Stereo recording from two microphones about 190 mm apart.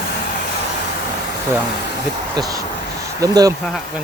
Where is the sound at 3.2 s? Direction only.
20° right (ahead or behind).